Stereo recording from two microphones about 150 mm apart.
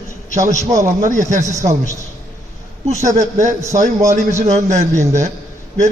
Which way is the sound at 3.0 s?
55° right (ahead or behind).